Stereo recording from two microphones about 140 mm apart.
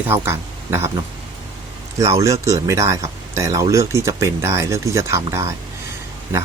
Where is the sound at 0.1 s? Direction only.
15° right (ahead or behind).